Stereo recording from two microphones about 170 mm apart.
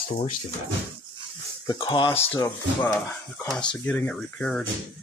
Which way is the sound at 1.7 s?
25° left (ahead or behind).